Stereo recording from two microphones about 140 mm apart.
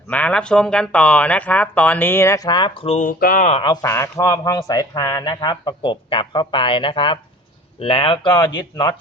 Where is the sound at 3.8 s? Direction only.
20° left (ahead or behind).